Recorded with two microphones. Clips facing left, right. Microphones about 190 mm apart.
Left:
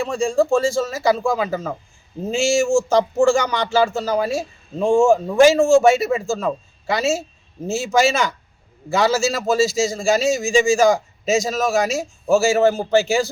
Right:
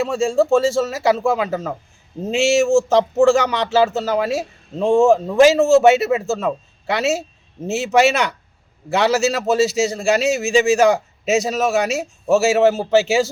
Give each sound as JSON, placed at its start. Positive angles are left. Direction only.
{"t": 0.0, "sound": "speech", "side_deg": -5}
{"t": 10.8, "sound": "a man's voice", "side_deg": -65}
{"t": 11.4, "sound": "speech", "side_deg": 0}
{"t": 11.8, "sound": "speech", "side_deg": -65}
{"t": 12.2, "sound": "speech", "side_deg": -5}